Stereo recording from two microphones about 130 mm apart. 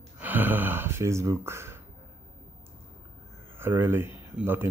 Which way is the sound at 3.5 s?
15° right (ahead or behind).